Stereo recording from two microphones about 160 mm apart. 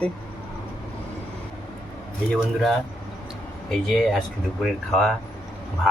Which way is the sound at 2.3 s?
Centre (ahead or behind).